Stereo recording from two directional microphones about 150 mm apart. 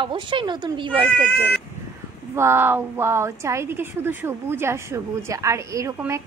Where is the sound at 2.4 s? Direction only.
15° right (ahead or behind).